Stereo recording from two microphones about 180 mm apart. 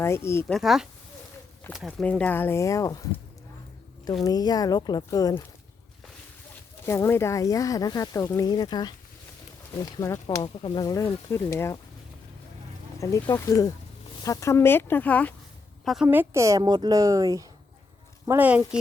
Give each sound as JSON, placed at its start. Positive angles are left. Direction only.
{"t": 0.0, "sound": "speech", "side_deg": 15}
{"t": 0.4, "sound": "speech", "side_deg": 0}
{"t": 6.8, "sound": "speech", "side_deg": 15}
{"t": 13.0, "sound": "a woman's voice", "side_deg": 15}
{"t": 16.0, "sound": "a woman's voice", "side_deg": -15}
{"t": 18.3, "sound": "speech", "side_deg": -10}